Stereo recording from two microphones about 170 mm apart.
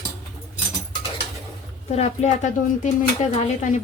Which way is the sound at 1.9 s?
40° left (ahead or behind).